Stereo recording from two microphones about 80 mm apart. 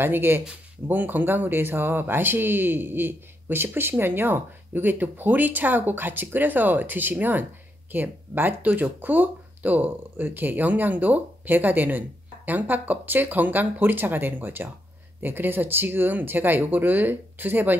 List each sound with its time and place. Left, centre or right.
0.0 s speech: right